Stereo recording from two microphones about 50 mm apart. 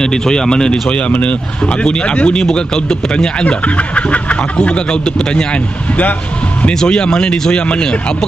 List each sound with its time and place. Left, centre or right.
0.0 s speech: centre